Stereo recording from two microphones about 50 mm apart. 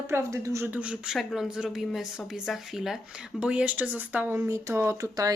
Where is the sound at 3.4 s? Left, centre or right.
Right.